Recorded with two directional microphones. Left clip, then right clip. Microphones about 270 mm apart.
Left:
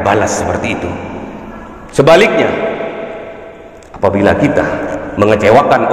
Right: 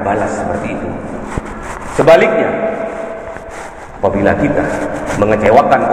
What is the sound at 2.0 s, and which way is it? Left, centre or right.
Speech, left.